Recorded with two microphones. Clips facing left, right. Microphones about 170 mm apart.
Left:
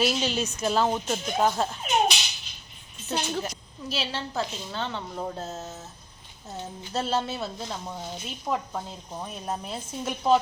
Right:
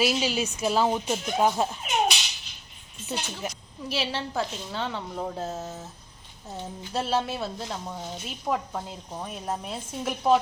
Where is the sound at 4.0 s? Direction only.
Centre (ahead or behind).